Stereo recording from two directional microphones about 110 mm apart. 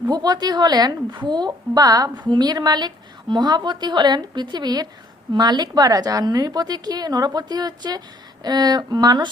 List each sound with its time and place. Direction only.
0.1 s a woman's voice: 40° right (ahead or behind)